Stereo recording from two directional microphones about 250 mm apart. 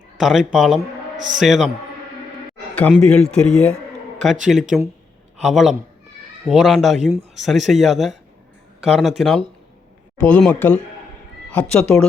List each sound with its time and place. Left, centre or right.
0.2 s speech: centre
1.1 s a man's voice: right
1.4 s speech: centre
2.7 s speech: centre